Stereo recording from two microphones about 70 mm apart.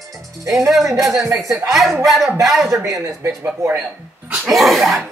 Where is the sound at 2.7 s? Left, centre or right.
Right.